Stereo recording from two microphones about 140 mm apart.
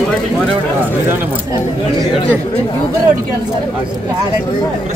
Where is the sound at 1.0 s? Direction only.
15° right (ahead or behind).